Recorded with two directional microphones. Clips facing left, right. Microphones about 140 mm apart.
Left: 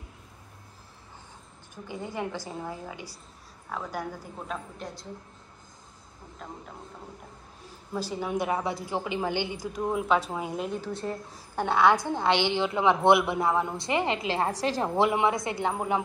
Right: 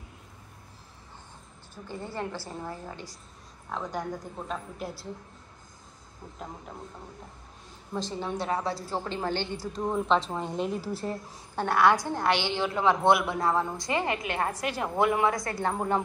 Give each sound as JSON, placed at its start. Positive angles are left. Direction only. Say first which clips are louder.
{"t": 1.9, "sound": "a woman's voice", "louder": "left 1 dB", "side_deg": 15}
{"t": 4.7, "sound": "speech", "louder": "right 2 dB", "side_deg": -5}
{"t": 7.9, "sound": "a woman's voice", "louder": "left 2 dB", "side_deg": 10}
{"t": 11.5, "sound": "a woman's voice", "louder": "left 1 dB", "side_deg": 20}
{"t": 15.6, "sound": "a woman's voice", "louder": "right 1 dB", "side_deg": 10}